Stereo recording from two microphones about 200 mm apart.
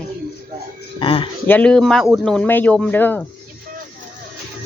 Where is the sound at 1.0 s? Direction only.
25° left (ahead or behind).